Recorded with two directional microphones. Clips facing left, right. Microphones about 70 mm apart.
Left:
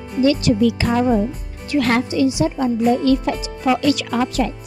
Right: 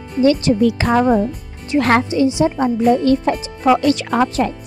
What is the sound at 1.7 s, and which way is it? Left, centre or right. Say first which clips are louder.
Speech: right 3 dB; right.